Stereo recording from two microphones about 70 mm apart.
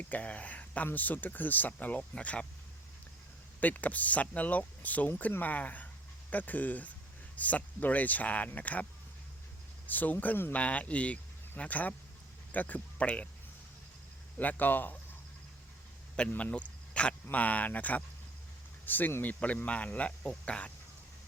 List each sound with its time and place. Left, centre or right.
0.0 s a sound: centre
0.9 s speech: left
3.6 s speech: left
14.3 s speech: left
16.4 s speech: centre
16.9 s a sound: centre
17.3 s speech: left